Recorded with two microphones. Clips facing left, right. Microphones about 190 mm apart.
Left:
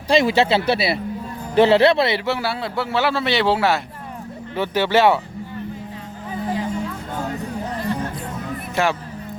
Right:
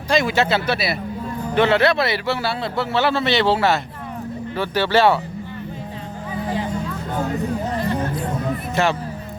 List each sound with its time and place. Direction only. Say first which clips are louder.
0.1 s a man's voice: left 2 dB; 30° left (ahead or behind)
8.7 s speech: even; 10° left (ahead or behind)